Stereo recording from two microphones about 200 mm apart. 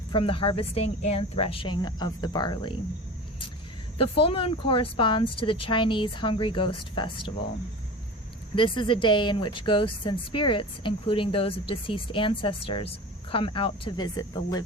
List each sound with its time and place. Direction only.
0.1 s speech: 25° left (ahead or behind)
3.9 s speech: 30° left (ahead or behind)
8.5 s speech: 25° left (ahead or behind)